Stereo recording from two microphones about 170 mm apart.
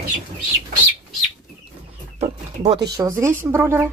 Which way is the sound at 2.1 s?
30° right (ahead or behind).